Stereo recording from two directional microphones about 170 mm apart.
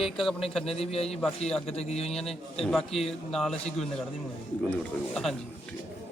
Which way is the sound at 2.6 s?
Centre (ahead or behind).